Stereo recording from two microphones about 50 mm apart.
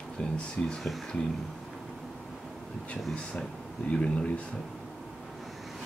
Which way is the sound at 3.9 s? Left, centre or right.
Left.